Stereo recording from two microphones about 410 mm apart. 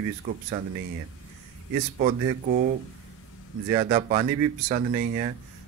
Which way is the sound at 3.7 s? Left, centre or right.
Centre.